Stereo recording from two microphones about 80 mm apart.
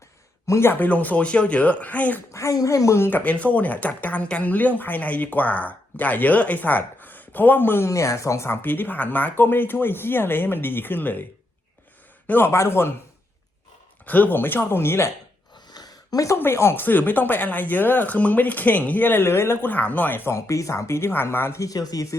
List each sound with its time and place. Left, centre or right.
0.4 s speech: left
0.7 s speech: left
2.3 s speech: left
3.1 s speech: centre
7.9 s speech: left
12.3 s speech: left
14.0 s speech: left
15.7 s a sound: left
16.4 s speech: left
20.3 s speech: left
21.6 s speech: left